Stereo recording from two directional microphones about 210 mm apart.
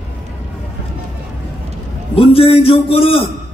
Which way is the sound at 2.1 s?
25° left (ahead or behind).